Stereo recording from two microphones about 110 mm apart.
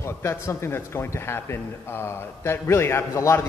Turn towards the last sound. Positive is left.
turn(degrees=25)  # may be behind; listen again after turning